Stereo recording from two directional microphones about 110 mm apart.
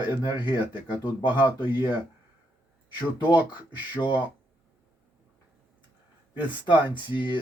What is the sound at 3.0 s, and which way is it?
Speech, 40° left (ahead or behind).